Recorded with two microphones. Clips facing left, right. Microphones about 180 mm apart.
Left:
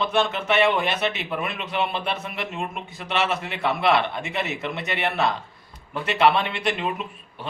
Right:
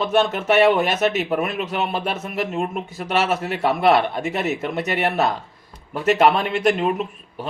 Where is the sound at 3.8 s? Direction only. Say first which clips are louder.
Right 4 dB; 45° right (ahead or behind).